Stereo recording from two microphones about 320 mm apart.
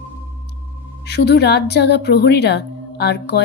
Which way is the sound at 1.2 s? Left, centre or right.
Left.